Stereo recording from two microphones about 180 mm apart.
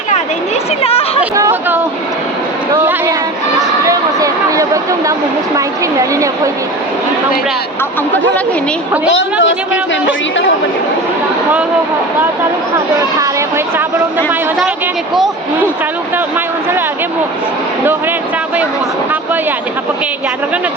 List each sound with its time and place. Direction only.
0.8 s chatter: 35° left (ahead or behind)
1.4 s a sound: 15° right (ahead or behind)
3.6 s a sound: 20° right (ahead or behind)
5.5 s a woman's voice: 20° right (ahead or behind)
9.1 s a woman's voice: 90° left
13.0 s speech: 20° right (ahead or behind)